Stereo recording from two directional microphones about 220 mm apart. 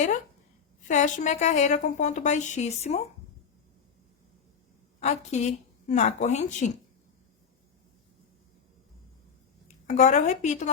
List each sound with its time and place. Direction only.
0.9 s a woman's voice: 35° left (ahead or behind)
4.9 s a woman's voice: 30° left (ahead or behind)
9.6 s a woman's voice: 30° left (ahead or behind)